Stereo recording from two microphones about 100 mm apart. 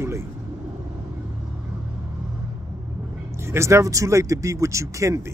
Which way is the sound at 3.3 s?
25° right (ahead or behind).